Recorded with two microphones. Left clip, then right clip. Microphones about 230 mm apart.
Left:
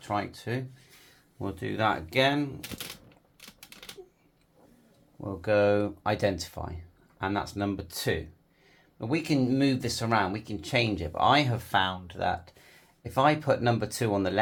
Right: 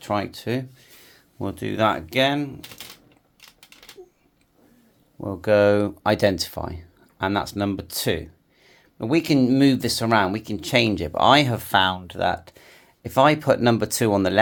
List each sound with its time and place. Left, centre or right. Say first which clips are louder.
0.0 s speech: right 6 dB; right
1.4 s speech: right 7 dB; right
5.2 s speech: right 7 dB; right